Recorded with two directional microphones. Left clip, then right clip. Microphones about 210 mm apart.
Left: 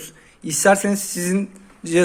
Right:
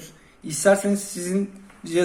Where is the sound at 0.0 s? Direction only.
55° left (ahead or behind).